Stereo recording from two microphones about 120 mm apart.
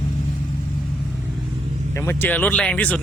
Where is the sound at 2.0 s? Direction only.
20° left (ahead or behind).